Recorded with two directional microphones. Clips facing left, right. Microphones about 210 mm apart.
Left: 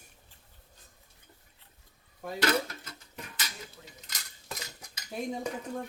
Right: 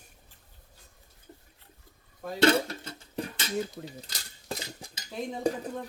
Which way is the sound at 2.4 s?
30° right (ahead or behind).